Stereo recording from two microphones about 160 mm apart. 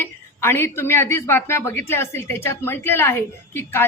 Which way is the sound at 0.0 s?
15° left (ahead or behind).